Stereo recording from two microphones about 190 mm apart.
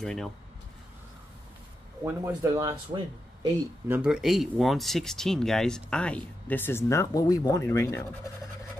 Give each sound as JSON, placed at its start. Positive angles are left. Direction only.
{"t": 0.0, "sound": "speech", "side_deg": 5}
{"t": 2.0, "sound": "speech", "side_deg": -15}
{"t": 3.9, "sound": "speech", "side_deg": -5}